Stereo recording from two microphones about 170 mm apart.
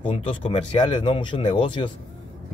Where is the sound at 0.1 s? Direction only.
30° left (ahead or behind).